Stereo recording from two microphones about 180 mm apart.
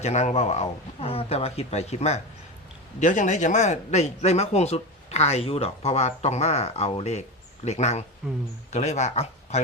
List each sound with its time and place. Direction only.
0.0 s a man's voice: 40° left (ahead or behind)